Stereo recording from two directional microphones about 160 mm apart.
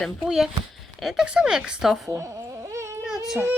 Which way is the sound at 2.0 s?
20° right (ahead or behind).